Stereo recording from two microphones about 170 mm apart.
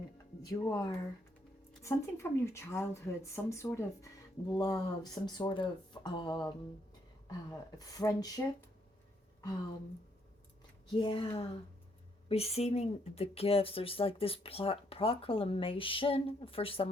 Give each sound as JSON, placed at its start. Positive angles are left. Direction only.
{"t": 0.4, "sound": "speech", "side_deg": 20}
{"t": 7.8, "sound": "speech", "side_deg": 20}
{"t": 11.0, "sound": "speech", "side_deg": 35}